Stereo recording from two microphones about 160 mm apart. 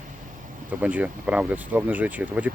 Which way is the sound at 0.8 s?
10° right (ahead or behind).